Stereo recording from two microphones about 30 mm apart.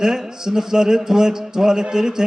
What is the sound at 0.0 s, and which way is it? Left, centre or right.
Music, right.